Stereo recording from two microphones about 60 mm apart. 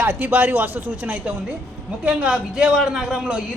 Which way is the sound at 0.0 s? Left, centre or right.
Right.